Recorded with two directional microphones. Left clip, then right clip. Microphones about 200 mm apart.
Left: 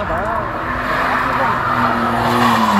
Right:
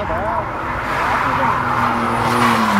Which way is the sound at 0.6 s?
35° right (ahead or behind).